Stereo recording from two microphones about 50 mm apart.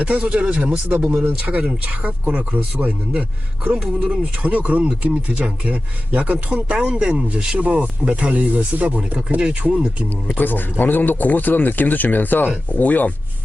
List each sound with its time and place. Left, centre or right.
0.3 s speech: right
1.4 s speech: right
10.3 s speech: left